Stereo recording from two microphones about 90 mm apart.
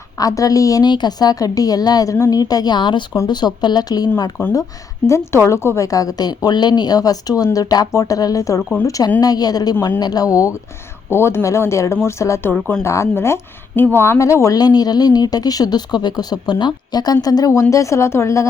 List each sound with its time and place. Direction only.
0.2 s a woman's voice: 40° left (ahead or behind)
0.9 s speech: 50° left (ahead or behind)
2.1 s a woman's voice: 30° left (ahead or behind)
2.4 s a woman's voice: 45° left (ahead or behind)
11.1 s a woman's voice: 30° left (ahead or behind)
12.5 s speech: 20° left (ahead or behind)
14.6 s speech: 45° left (ahead or behind)